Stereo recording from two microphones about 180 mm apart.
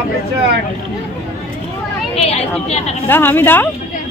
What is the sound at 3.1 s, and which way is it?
Speech, 10° left (ahead or behind).